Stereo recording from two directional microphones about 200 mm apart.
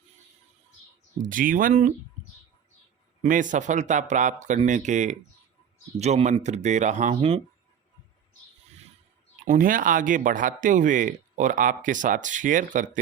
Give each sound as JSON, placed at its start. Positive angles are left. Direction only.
{"t": 1.2, "sound": "speech", "side_deg": -40}
{"t": 3.2, "sound": "speech", "side_deg": -40}
{"t": 9.5, "sound": "speech", "side_deg": -45}